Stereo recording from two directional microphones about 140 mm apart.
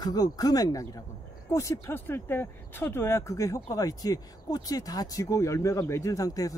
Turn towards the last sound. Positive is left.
turn(degrees=25)  # may be behind; listen again after turning